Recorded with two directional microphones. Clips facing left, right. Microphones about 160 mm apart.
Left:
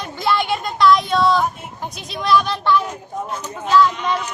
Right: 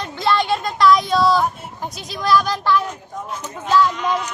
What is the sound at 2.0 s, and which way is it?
Speech, 25° left (ahead or behind).